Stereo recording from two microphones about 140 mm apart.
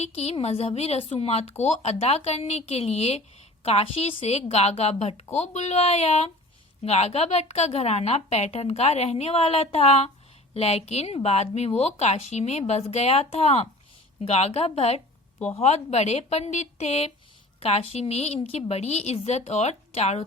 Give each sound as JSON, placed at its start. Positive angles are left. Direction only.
{"t": 0.0, "sound": "speech", "side_deg": 50}